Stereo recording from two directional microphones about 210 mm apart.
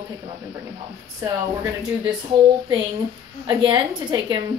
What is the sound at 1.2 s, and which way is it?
Speech, 15° right (ahead or behind).